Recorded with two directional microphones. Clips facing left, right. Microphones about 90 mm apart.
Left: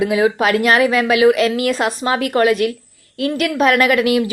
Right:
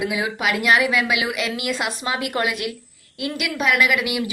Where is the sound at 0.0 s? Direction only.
35° left (ahead or behind).